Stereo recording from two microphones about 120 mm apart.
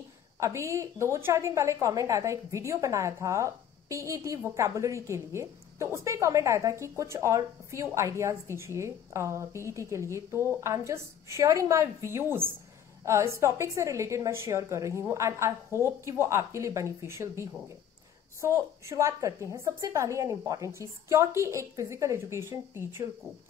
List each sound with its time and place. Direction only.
0.4 s a woman's voice: 25° right (ahead or behind)